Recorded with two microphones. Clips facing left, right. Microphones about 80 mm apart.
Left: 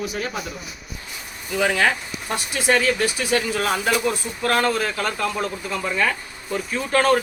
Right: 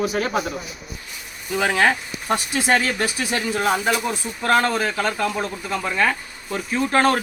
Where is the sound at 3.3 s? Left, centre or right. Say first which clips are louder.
Right 1 dB; right.